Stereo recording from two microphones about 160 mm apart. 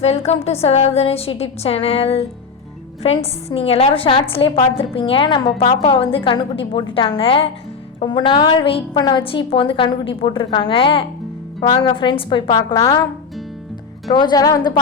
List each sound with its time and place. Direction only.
0.0 s a woman's voice: 40° left (ahead or behind); by 13.1 s 25° left (ahead or behind)
14.1 s a woman's voice: 30° left (ahead or behind)